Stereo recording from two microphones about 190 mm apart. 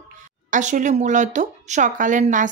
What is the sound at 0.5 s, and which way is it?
Speech, 40° right (ahead or behind).